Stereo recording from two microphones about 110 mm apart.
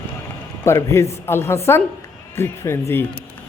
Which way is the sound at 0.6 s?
25° left (ahead or behind).